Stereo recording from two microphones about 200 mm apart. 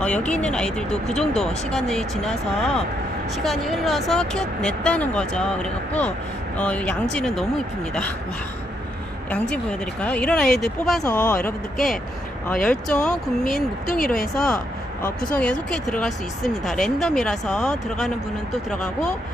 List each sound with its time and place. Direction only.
0.0 s speech: 5° left (ahead or behind)
9.3 s speech: 5° left (ahead or behind)
13.5 s speech: 45° left (ahead or behind)
14.3 s speech: centre (ahead or behind)
15.0 s speech: 45° left (ahead or behind)
15.7 s speech: 5° left (ahead or behind)